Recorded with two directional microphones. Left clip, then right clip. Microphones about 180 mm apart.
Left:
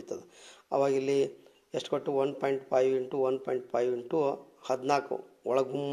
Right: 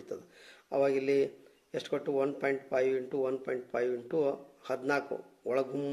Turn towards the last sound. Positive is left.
turn(degrees=20)  # may be behind; listen again after turning